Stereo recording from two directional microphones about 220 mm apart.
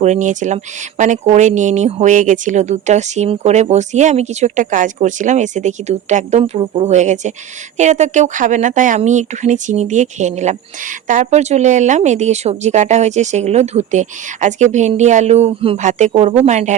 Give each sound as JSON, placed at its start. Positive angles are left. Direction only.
{"t": 0.0, "sound": "speech", "side_deg": -35}